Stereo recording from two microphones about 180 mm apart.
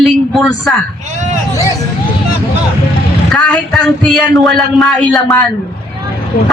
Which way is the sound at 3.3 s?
5° left (ahead or behind).